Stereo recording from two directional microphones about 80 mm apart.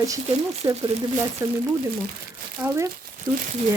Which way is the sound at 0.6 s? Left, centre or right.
Right.